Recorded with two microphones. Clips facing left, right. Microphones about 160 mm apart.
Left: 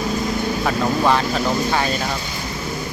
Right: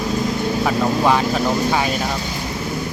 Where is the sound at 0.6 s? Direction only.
10° right (ahead or behind).